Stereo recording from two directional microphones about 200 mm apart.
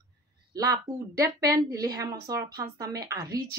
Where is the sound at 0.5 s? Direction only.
15° right (ahead or behind).